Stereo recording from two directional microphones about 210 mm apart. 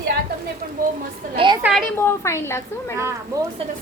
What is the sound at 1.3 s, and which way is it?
Speech, 25° right (ahead or behind).